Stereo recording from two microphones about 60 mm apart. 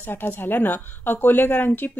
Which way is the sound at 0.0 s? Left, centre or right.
Left.